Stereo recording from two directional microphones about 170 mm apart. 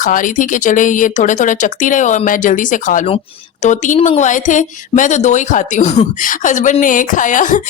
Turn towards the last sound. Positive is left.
turn(degrees=50)  # may be behind; listen again after turning